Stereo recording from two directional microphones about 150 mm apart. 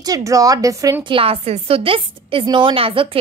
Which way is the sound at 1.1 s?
40° right (ahead or behind).